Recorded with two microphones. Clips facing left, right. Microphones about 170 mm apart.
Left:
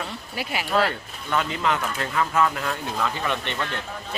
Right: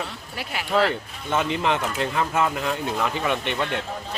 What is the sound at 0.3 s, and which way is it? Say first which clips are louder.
Speech: left 2 dB; 5° left (ahead or behind).